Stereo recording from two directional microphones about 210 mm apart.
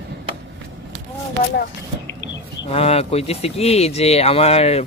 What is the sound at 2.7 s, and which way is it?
Speech, 30° left (ahead or behind).